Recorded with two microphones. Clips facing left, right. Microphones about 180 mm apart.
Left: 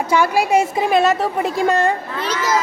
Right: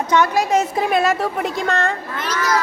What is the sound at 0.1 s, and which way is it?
Speech, 10° left (ahead or behind).